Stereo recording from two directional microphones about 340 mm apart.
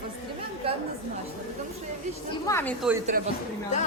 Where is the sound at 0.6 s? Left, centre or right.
Centre.